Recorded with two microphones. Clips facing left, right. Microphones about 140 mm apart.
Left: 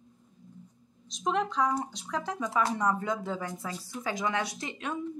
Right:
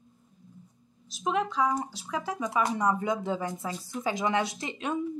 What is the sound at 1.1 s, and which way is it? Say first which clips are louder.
Speech: right 1 dB; 5° right (ahead or behind).